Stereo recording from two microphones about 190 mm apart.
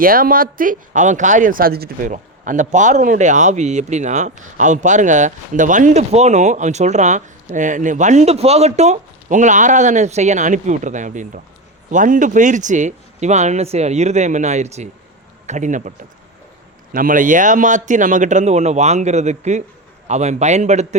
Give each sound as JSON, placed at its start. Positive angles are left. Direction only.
{"t": 0.0, "sound": "speech", "side_deg": -50}
{"t": 2.1, "sound": "a man's voice", "side_deg": -40}